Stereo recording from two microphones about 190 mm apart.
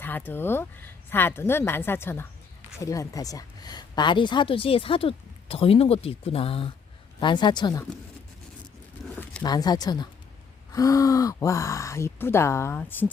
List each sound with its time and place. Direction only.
0.0 s a woman's voice: 10° left (ahead or behind)
9.4 s a woman's voice: 20° left (ahead or behind)